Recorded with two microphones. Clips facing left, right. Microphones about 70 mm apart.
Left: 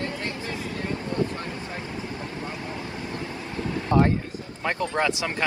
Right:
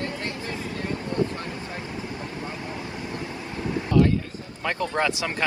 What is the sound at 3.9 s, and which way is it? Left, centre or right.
Vehicle, left.